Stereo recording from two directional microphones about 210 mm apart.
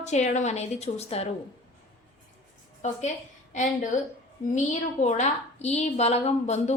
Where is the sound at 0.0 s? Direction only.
35° left (ahead or behind).